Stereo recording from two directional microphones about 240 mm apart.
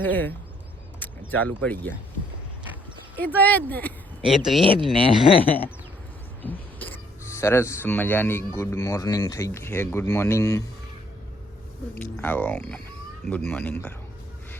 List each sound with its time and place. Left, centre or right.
0.0 s speech: centre
1.0 s a sound: centre
1.6 s speech: centre
3.2 s speech: centre
4.6 s speech: right
4.9 s speech: left
6.4 s throat clearing: centre
7.3 s speech: centre
11.9 s speech: centre